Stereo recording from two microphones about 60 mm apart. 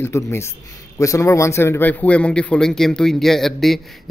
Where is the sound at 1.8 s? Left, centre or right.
Left.